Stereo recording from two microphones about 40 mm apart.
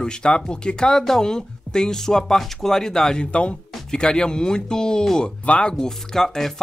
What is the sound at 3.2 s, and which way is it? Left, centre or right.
Speech, left.